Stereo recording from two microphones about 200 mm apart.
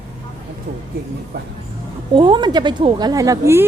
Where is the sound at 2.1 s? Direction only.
25° right (ahead or behind).